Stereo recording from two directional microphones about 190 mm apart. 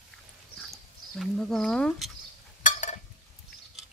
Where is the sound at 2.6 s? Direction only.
40° left (ahead or behind).